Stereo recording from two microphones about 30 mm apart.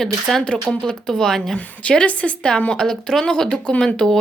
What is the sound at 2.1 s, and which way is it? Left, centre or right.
Speech, left.